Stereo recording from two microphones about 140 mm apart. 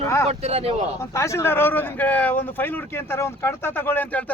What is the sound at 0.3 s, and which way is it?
Speech, 45° right (ahead or behind).